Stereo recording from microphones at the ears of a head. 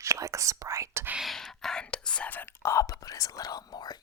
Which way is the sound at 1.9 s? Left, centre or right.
Left.